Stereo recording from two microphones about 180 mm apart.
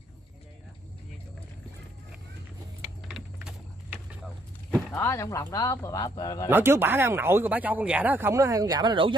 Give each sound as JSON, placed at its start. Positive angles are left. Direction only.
{"t": 3.1, "sound": "a sound", "side_deg": -5}
{"t": 4.7, "sound": "speech", "side_deg": 15}
{"t": 6.5, "sound": "speech", "side_deg": -10}